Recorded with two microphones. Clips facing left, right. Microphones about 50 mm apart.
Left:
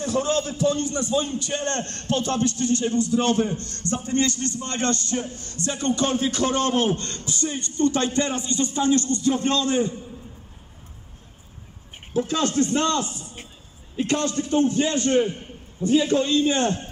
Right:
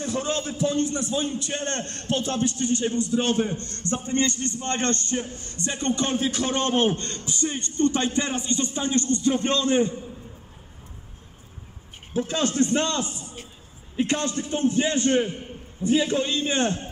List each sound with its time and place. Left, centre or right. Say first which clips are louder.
0.0 s a man's voice: left 4 dB; centre
3.5 s a man's voice: left 1 dB; right
5.3 s a man's voice: left 2 dB; centre
6.1 s a man's voice: left 2 dB; centre
12.3 s a man's voice: even; right